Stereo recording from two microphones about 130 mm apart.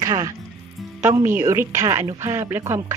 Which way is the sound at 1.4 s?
20° right (ahead or behind).